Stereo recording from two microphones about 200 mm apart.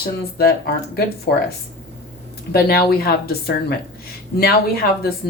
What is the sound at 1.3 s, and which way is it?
Speech, 50° left (ahead or behind).